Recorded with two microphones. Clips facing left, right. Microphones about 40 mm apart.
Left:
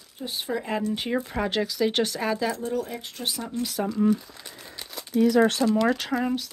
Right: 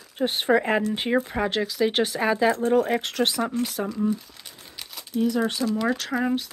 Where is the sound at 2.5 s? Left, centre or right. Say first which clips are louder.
Right 8 dB; right.